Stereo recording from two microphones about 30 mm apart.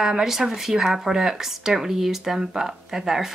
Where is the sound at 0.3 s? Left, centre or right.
Centre.